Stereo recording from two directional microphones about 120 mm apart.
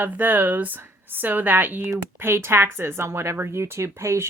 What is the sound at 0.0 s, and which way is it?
Speech, 15° right (ahead or behind).